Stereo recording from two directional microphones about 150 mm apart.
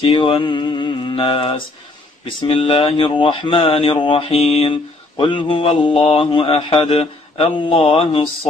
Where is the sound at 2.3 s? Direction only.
35° left (ahead or behind).